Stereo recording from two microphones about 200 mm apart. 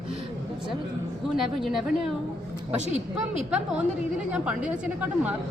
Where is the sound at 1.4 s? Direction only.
Centre (ahead or behind).